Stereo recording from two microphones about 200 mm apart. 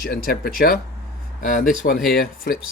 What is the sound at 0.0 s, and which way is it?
Speech, 45° left (ahead or behind).